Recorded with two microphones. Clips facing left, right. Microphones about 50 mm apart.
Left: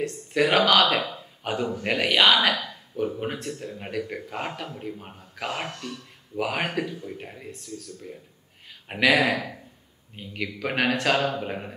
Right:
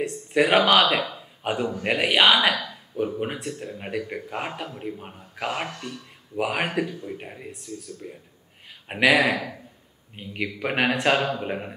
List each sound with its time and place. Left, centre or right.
0.0 s speech: centre
10.1 s speech: centre